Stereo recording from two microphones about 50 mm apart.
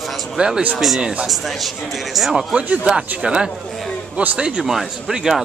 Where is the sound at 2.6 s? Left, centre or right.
Right.